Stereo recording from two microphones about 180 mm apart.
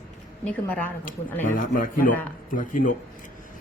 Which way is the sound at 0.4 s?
10° left (ahead or behind).